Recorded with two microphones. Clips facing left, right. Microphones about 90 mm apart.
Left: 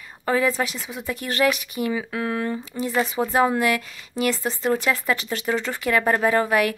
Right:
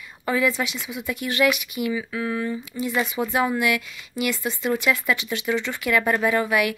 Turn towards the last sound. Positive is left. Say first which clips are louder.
# left 2 dB
turn(degrees=35)  # may be behind; listen again after turning